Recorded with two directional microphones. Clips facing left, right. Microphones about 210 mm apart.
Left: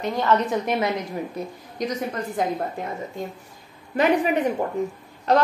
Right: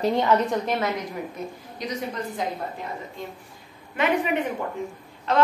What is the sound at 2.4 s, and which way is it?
Speech, 50° left (ahead or behind).